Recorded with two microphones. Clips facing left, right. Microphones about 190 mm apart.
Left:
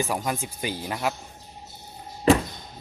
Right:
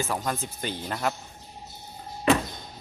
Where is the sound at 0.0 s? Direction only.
10° left (ahead or behind).